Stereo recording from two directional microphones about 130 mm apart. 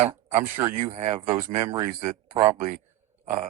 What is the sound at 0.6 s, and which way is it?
Speech, 25° right (ahead or behind).